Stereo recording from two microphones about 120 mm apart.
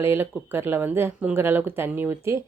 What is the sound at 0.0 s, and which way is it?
Speech, 20° right (ahead or behind).